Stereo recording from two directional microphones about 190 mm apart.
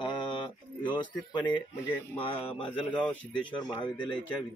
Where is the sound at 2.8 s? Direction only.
5° left (ahead or behind).